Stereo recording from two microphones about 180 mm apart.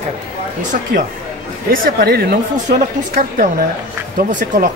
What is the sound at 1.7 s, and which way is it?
Speech, 55° right (ahead or behind).